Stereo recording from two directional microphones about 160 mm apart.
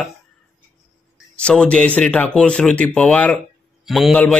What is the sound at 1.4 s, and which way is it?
Speech, 5° left (ahead or behind).